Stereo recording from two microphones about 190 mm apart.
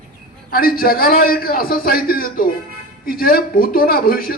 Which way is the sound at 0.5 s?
50° left (ahead or behind).